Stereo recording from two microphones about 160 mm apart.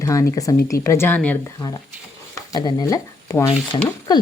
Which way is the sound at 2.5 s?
25° left (ahead or behind).